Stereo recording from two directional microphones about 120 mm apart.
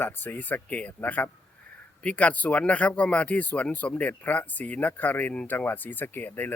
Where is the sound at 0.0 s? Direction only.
15° left (ahead or behind).